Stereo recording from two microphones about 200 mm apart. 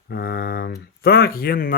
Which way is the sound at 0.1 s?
50° left (ahead or behind).